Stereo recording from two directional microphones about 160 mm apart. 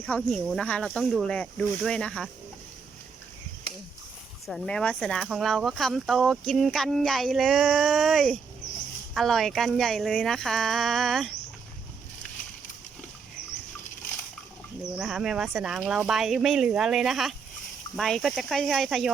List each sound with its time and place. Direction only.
0.0 s speech: 5° left (ahead or behind)
4.4 s speech: 5° left (ahead or behind)
14.9 s speech: centre (ahead or behind)